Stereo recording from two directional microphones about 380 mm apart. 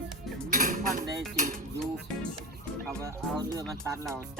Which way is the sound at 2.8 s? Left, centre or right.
Centre.